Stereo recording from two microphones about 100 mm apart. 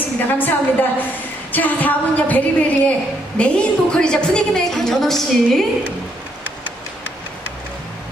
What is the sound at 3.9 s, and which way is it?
A woman's voice, 10° left (ahead or behind).